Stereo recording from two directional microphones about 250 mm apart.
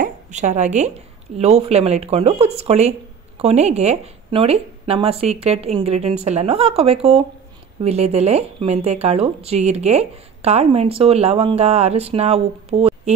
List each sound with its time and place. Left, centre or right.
0.0 s a woman's voice: right